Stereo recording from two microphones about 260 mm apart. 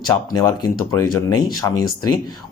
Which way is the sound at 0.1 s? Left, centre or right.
Centre.